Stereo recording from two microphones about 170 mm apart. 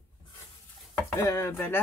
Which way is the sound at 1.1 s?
20° left (ahead or behind).